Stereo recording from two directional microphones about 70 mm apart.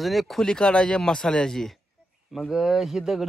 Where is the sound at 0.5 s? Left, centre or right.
Centre.